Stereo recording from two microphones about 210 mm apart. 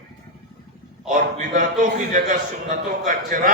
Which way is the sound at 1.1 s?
40° right (ahead or behind).